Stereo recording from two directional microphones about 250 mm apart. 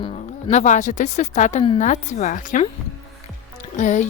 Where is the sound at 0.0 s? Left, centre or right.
Left.